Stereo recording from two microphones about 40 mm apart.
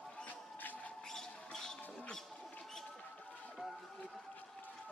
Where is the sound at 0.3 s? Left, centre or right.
Left.